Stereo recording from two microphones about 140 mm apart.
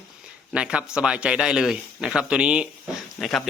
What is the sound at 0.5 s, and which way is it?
A man's voice, 10° right (ahead or behind).